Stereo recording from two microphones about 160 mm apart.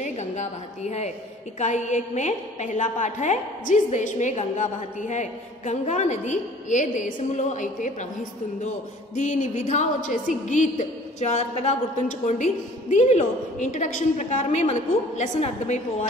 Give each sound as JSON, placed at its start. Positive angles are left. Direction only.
{"t": 0.0, "sound": "a woman's voice", "side_deg": 45}
{"t": 9.1, "sound": "a woman's voice", "side_deg": 50}